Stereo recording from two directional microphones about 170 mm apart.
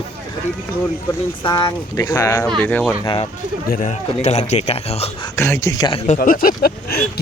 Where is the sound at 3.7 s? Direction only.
45° left (ahead or behind).